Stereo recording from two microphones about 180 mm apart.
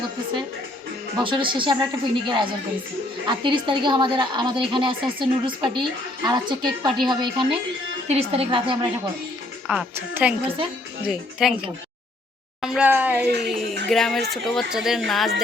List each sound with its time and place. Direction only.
1.2 s a woman's voice: 30° right (ahead or behind)
9.6 s a woman's voice: 5° right (ahead or behind)
12.6 s speech: 5° right (ahead or behind)
13.2 s speech: 65° right (ahead or behind)
13.8 s speech: centre (ahead or behind)